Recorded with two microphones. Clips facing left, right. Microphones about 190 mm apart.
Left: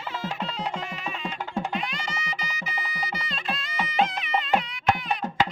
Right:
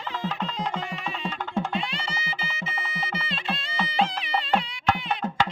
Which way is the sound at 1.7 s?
30° right (ahead or behind).